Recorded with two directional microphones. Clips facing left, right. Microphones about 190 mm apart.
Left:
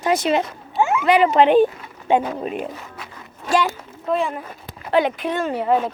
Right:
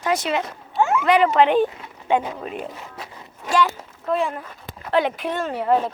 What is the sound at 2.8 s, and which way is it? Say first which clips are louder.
Speech: right 1 dB; 35° right (ahead or behind).